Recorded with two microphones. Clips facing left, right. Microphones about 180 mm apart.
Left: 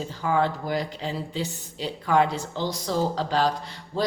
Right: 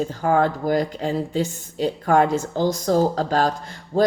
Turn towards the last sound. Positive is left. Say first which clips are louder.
# right 8 dB
turn(degrees=-45)  # may be behind; listen again after turning